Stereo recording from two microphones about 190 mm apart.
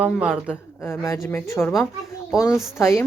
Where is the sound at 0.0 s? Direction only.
5° right (ahead or behind).